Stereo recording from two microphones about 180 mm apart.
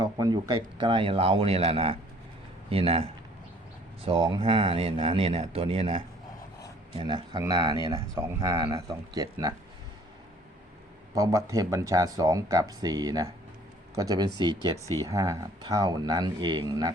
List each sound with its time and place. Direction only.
0.0 s speech: 20° right (ahead or behind)
11.1 s speech: 15° right (ahead or behind)